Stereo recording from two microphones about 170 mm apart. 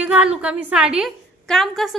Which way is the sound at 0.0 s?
5° right (ahead or behind).